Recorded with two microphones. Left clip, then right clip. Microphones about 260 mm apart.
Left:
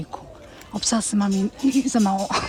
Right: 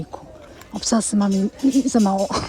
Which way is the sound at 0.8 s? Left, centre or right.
Centre.